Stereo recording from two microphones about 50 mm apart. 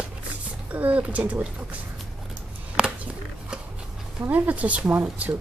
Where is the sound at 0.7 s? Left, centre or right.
Right.